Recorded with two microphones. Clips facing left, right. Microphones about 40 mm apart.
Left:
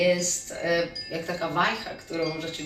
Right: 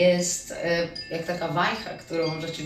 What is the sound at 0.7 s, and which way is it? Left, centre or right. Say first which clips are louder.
Speech: even; centre.